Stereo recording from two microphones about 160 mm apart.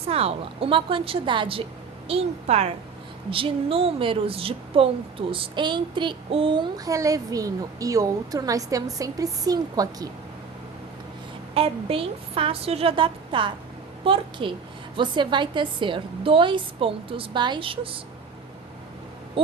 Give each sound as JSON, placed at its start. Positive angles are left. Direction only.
{"t": 0.0, "sound": "a woman's voice", "side_deg": -40}
{"t": 11.5, "sound": "a woman's voice", "side_deg": -35}